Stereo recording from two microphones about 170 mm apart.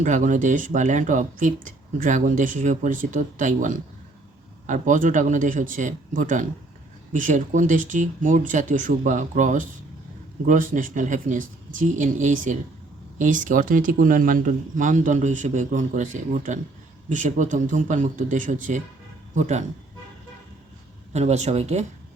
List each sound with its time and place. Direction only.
0.0 s speech: 45° right (ahead or behind)
21.1 s speech: 40° right (ahead or behind)